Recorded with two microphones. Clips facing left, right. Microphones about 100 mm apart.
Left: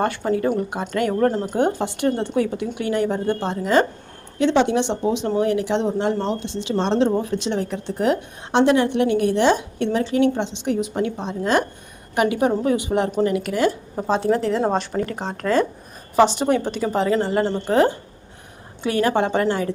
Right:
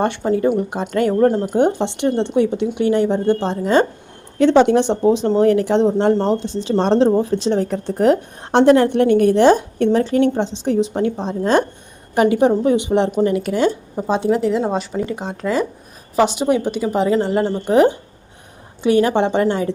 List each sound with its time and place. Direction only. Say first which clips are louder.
0.3 s speech: right 4 dB; 25° right (ahead or behind)
4.4 s a woman's voice: right 5 dB; 45° right (ahead or behind); by 13.7 s 25° right (ahead or behind)
14.1 s a woman's voice: right 2 dB; 15° right (ahead or behind)